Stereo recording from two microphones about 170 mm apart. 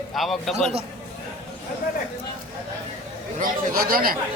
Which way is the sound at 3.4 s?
55° right (ahead or behind).